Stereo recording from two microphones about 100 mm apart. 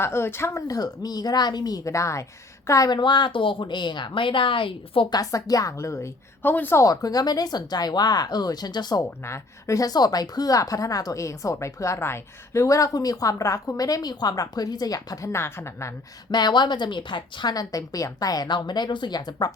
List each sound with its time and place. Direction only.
0.0 s a woman's voice: 25° left (ahead or behind)
2.9 s a woman's voice: 50° left (ahead or behind)
5.1 s a woman's voice: 35° left (ahead or behind); by 6.8 s 20° left (ahead or behind)
6.8 s a woman's voice: 35° left (ahead or behind)
9.2 s a woman's voice: 30° left (ahead or behind)
16.3 s a woman's voice: 50° left (ahead or behind)